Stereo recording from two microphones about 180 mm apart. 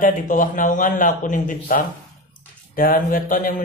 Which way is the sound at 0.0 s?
50° left (ahead or behind).